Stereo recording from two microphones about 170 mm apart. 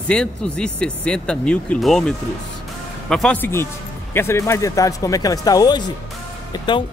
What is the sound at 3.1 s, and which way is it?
Speech, 5° left (ahead or behind).